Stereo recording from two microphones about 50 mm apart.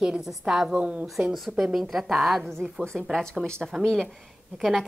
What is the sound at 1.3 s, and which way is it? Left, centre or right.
A woman's voice, centre.